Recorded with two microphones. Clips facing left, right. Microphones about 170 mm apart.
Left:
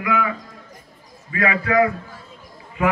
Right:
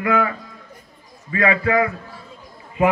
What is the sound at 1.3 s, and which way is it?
Speech, 30° right (ahead or behind).